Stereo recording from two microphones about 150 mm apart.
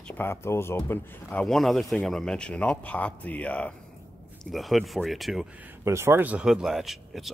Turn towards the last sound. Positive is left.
turn(degrees=0)  # may be behind; listen again after turning